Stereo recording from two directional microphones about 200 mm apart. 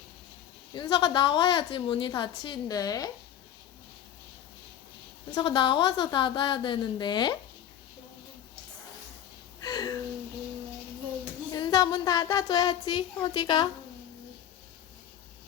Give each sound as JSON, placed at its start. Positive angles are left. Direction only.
{"t": 0.7, "sound": "a woman's voice", "side_deg": 25}
{"t": 5.3, "sound": "a woman's voice", "side_deg": 25}
{"t": 9.6, "sound": "a sound", "side_deg": 20}
{"t": 11.5, "sound": "a woman's voice", "side_deg": 20}